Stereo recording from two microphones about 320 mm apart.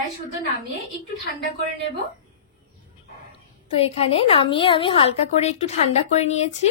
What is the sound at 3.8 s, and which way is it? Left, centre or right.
A woman's voice, centre.